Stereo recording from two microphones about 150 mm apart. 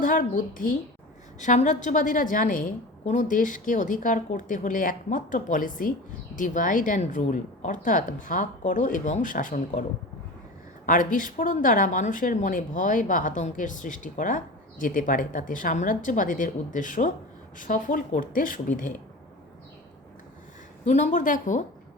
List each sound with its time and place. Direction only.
0.0 s speech: 65° left (ahead or behind)
10.8 s speech: 60° left (ahead or behind)
20.8 s speech: 50° left (ahead or behind)